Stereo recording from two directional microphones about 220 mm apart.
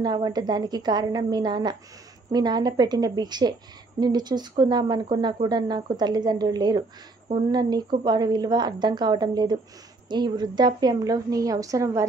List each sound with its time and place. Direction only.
0.0 s a woman's voice: 20° right (ahead or behind)